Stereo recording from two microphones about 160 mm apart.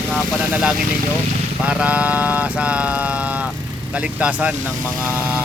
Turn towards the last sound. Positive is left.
turn(degrees=-10)  # may be behind; listen again after turning